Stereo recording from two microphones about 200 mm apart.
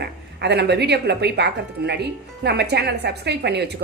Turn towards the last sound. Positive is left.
turn(degrees=-55)  # may be behind; listen again after turning